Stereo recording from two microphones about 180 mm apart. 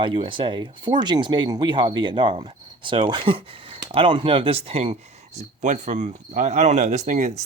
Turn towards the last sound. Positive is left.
turn(degrees=-40)  # may be behind; listen again after turning